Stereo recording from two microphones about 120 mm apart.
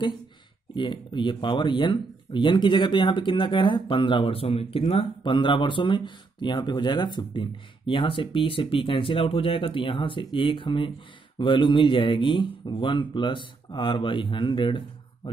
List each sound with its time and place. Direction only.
0.7 s speech: 40° left (ahead or behind)